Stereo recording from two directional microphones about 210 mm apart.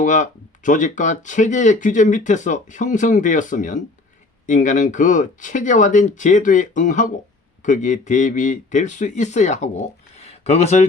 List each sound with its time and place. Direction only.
0.0 s speech: 35° left (ahead or behind)